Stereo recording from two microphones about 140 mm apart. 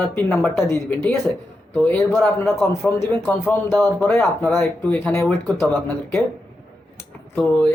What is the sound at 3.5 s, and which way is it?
A man's voice, 15° left (ahead or behind).